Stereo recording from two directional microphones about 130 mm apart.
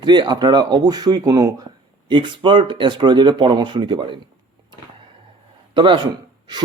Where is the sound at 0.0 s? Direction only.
35° right (ahead or behind).